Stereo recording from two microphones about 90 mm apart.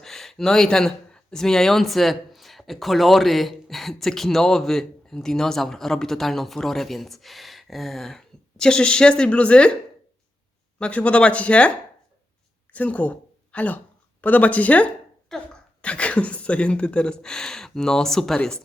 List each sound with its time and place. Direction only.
0.0 s speech: 5° left (ahead or behind)
10.8 s a woman's voice: 15° left (ahead or behind)
15.3 s speech: 5° left (ahead or behind)
15.8 s speech: 15° left (ahead or behind)